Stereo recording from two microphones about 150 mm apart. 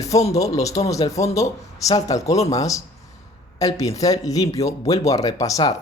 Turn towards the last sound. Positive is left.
turn(degrees=25)  # may be behind; listen again after turning